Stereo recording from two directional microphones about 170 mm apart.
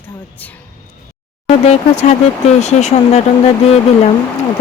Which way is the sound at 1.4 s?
40° left (ahead or behind).